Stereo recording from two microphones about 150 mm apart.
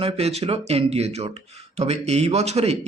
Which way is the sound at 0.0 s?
45° right (ahead or behind).